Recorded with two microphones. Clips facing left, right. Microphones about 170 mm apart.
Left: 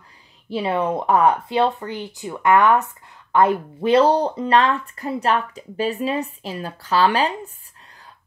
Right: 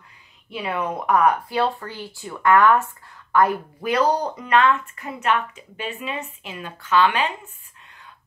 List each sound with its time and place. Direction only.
0.5 s speech: 30° left (ahead or behind)